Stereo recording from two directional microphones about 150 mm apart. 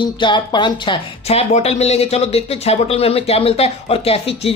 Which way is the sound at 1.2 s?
45° left (ahead or behind).